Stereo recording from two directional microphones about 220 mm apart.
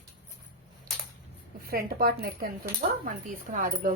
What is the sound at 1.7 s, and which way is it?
Speech, 45° right (ahead or behind).